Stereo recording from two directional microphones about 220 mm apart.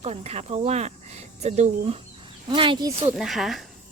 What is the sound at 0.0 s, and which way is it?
Speech, 30° right (ahead or behind).